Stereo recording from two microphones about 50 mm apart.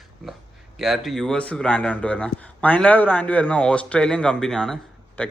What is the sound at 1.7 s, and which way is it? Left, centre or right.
Speech, left.